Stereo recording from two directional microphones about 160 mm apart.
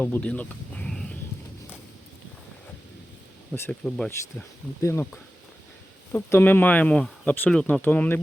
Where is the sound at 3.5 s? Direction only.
5° left (ahead or behind).